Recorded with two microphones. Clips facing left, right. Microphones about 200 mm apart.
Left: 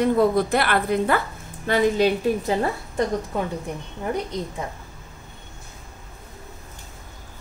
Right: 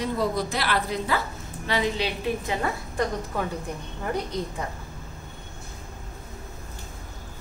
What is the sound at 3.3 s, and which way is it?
Speech, 20° left (ahead or behind).